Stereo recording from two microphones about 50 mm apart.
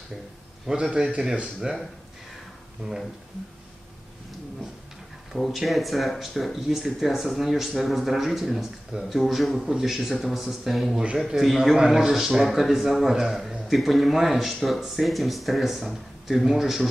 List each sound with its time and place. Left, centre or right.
0.7 s a man's voice: centre
5.3 s a man's voice: centre